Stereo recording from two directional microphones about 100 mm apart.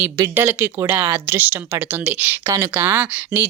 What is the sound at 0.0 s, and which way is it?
Speech, 20° right (ahead or behind).